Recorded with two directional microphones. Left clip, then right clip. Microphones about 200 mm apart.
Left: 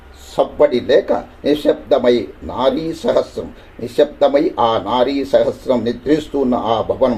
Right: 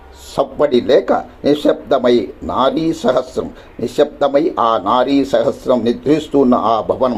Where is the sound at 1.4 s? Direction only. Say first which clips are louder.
Right 1 dB; 15° right (ahead or behind).